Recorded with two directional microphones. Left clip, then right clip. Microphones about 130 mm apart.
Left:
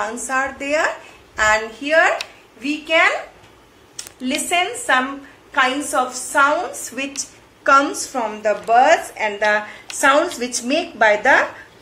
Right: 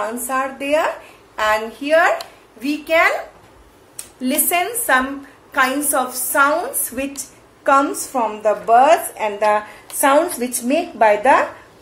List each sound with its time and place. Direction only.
0.0 s speech: 5° right (ahead or behind)
2.6 s a woman's voice: 35° right (ahead or behind)
4.2 s a woman's voice: 40° right (ahead or behind)
7.6 s a woman's voice: 20° right (ahead or behind)